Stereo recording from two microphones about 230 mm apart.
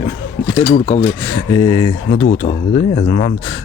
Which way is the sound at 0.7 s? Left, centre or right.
Left.